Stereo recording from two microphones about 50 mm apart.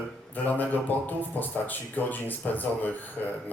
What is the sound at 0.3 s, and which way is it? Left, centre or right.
A man's voice, left.